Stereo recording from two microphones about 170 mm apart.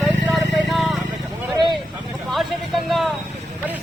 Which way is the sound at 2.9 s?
Centre (ahead or behind).